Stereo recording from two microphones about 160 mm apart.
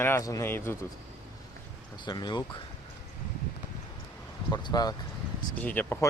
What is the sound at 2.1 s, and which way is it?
Speech, 25° left (ahead or behind).